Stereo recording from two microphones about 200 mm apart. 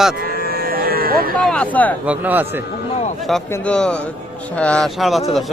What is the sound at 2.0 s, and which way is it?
Speech, 5° right (ahead or behind).